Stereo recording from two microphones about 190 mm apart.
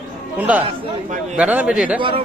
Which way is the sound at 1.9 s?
25° right (ahead or behind).